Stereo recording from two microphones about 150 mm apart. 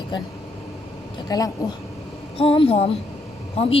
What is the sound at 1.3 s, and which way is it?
Speech, 25° left (ahead or behind).